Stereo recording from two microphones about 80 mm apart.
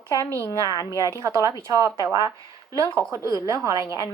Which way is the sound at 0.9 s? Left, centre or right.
Right.